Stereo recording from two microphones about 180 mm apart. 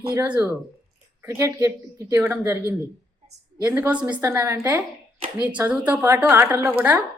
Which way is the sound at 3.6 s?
10° right (ahead or behind).